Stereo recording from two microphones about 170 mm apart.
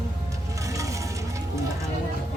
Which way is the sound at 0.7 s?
20° right (ahead or behind).